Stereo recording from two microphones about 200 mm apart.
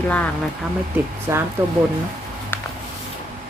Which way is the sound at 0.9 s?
10° right (ahead or behind).